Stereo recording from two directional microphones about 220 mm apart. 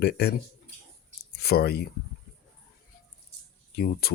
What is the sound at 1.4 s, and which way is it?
Speech, 45° left (ahead or behind).